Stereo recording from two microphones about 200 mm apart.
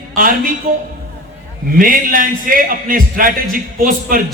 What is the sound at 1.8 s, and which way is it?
A man's voice, 45° right (ahead or behind).